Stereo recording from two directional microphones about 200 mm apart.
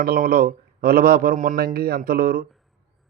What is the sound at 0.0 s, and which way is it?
A man's voice, 45° right (ahead or behind).